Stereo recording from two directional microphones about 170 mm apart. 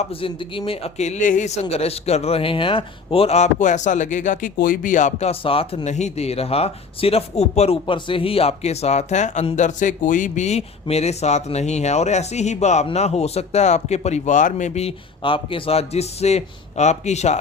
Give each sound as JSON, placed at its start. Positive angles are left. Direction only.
{"t": 0.0, "sound": "a man's voice", "side_deg": 30}